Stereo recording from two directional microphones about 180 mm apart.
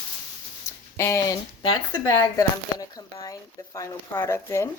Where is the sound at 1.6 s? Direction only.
25° left (ahead or behind).